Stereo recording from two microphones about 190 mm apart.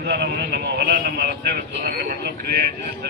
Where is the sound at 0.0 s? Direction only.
55° right (ahead or behind).